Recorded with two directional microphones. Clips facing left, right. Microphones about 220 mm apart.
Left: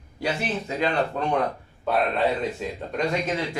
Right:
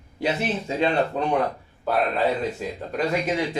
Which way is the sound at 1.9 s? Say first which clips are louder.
Even; centre (ahead or behind).